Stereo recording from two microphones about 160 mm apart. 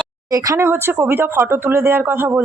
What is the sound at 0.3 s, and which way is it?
A woman's voice, 20° right (ahead or behind).